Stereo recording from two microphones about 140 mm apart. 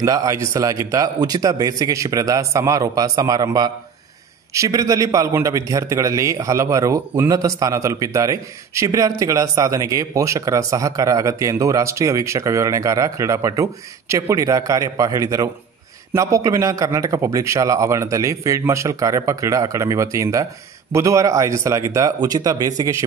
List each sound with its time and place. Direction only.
0.0 s speech: 25° right (ahead or behind)